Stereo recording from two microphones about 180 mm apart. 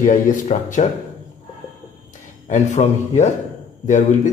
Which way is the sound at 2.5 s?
40° left (ahead or behind).